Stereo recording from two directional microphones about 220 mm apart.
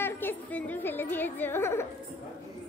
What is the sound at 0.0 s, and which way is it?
Music, 10° left (ahead or behind).